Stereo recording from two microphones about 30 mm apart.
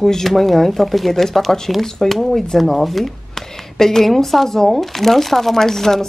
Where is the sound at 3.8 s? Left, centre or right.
Centre.